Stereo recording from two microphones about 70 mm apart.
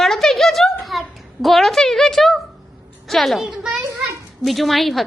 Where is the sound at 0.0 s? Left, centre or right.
Centre.